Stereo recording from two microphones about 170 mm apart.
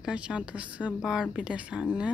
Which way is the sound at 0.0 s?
5° right (ahead or behind).